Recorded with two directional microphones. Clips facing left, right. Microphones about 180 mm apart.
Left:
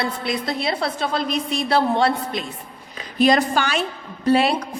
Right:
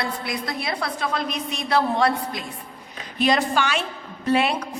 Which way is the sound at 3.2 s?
40° left (ahead or behind).